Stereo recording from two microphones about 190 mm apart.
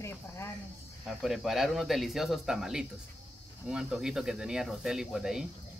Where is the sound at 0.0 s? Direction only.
15° left (ahead or behind).